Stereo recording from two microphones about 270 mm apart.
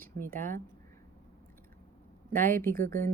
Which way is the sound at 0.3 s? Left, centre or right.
Right.